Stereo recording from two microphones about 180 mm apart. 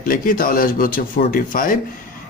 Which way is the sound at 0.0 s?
50° left (ahead or behind).